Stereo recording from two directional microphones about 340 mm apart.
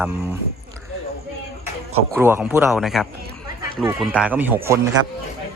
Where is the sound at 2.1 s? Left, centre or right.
Centre.